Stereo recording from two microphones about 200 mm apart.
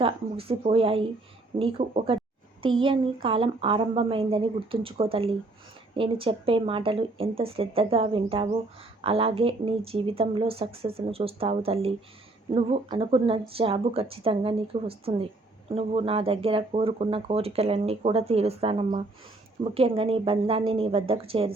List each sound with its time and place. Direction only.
0.0 s speech: 30° right (ahead or behind)